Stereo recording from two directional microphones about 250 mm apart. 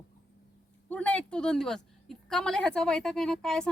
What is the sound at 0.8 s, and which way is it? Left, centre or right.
A woman's voice, centre.